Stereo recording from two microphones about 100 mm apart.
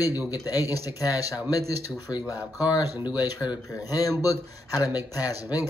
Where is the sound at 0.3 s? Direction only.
40° left (ahead or behind).